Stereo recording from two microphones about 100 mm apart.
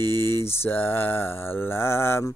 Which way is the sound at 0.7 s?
20° left (ahead or behind).